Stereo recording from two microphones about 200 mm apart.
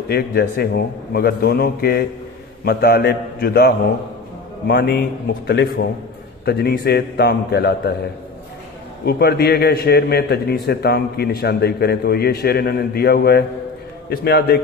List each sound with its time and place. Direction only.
0.1 s a man's voice: 55° left (ahead or behind)
9.0 s a man's voice: 55° left (ahead or behind)